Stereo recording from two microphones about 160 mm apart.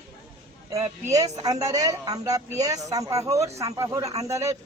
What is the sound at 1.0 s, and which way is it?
A man's voice, 20° right (ahead or behind).